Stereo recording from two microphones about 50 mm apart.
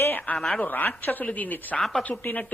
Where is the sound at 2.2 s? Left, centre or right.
Left.